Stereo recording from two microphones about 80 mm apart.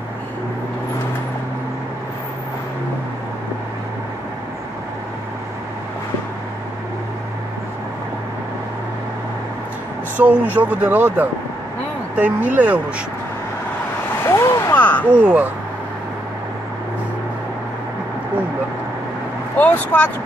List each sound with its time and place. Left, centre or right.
10.2 s speech: right
14.2 s vehicle: left
14.7 s a sound: left
15.2 s speech: right
19.5 s speech: left